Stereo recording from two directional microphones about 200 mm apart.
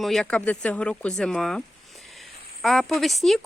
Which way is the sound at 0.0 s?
Centre (ahead or behind).